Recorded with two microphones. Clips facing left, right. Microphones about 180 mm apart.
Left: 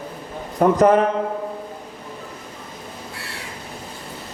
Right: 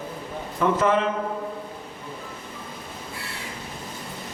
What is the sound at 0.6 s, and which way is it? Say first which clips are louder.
Speech: left 7 dB; 45° left (ahead or behind).